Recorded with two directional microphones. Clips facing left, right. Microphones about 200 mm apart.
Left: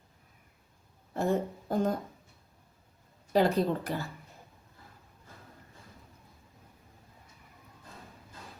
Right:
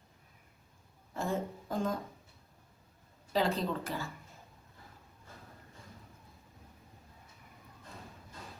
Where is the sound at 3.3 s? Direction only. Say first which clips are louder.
Left 6 dB; 55° left (ahead or behind).